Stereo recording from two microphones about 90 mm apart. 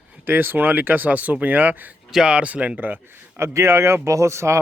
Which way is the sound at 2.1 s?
10° right (ahead or behind).